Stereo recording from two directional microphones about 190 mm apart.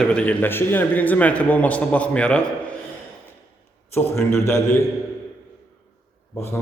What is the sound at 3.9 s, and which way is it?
Speech, 15° left (ahead or behind).